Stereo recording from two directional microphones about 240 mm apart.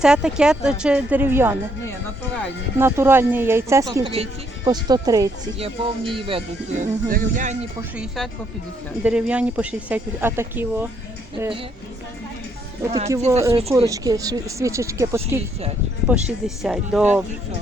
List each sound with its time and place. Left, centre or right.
0.0 s speech: centre
2.7 s speech: centre
7.1 s speech: right
7.9 s speech: centre
12.9 s speech: centre
13.5 s a woman's voice: right; by 17.1 s centre